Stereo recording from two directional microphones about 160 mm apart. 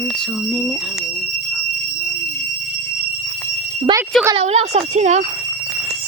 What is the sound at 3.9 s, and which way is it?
Speech, 35° right (ahead or behind).